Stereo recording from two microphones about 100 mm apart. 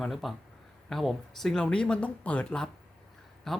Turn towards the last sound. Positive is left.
turn(degrees=5)  # may be behind; listen again after turning